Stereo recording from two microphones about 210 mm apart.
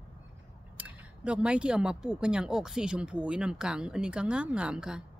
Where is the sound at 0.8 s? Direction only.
5° right (ahead or behind).